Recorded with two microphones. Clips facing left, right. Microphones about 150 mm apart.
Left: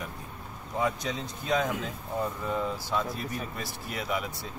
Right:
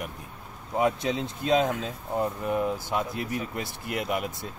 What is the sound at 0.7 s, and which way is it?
Speech, 20° right (ahead or behind).